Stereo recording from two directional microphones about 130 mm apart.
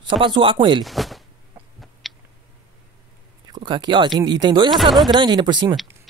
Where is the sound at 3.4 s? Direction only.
35° right (ahead or behind).